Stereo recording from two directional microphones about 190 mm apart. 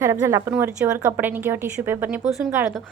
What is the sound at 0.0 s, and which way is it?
Speech, 15° right (ahead or behind).